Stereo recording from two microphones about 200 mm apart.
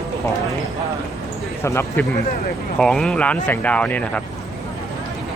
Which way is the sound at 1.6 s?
15° left (ahead or behind).